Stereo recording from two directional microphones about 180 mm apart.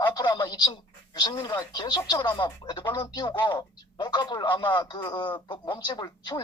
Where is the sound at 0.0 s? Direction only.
25° left (ahead or behind).